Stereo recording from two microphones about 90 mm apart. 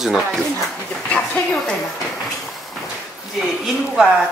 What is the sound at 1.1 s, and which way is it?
Speech, 10° left (ahead or behind).